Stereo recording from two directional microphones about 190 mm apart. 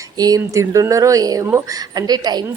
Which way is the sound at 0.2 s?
20° right (ahead or behind).